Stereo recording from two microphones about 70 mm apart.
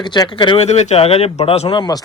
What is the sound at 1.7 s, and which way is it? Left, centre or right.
Speech, left.